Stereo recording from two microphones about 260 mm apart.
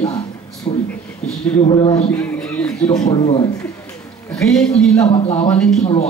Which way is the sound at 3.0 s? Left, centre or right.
Centre.